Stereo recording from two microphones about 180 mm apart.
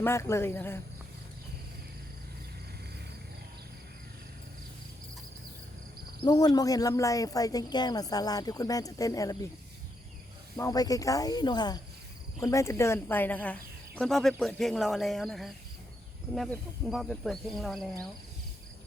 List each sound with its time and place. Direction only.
0.0 s speech: 15° left (ahead or behind)
6.2 s speech: 20° left (ahead or behind)
10.6 s speech: 20° left (ahead or behind); by 17.8 s centre (ahead or behind)